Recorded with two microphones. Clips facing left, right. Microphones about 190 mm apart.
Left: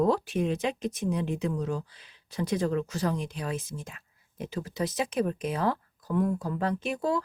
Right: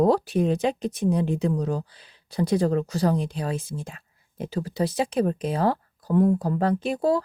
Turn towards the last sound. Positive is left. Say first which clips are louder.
# right 6 dB
turn(degrees=-35)  # may be behind; listen again after turning